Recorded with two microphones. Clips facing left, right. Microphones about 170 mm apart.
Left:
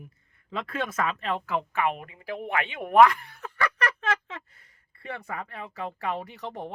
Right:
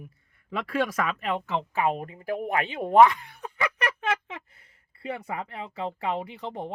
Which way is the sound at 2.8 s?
20° right (ahead or behind).